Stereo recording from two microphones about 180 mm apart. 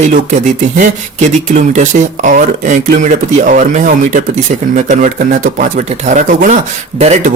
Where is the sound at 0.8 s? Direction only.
45° right (ahead or behind).